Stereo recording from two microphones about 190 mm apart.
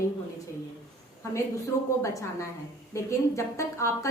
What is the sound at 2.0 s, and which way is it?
A woman's voice, 15° left (ahead or behind).